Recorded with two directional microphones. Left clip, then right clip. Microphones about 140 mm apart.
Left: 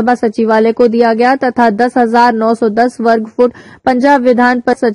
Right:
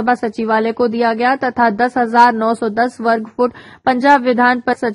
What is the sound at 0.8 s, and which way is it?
Speech, 55° left (ahead or behind).